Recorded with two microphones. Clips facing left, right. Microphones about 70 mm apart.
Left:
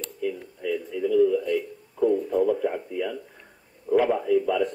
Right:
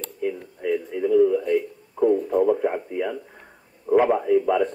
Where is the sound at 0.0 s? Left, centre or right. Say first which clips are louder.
Right 2 dB; right.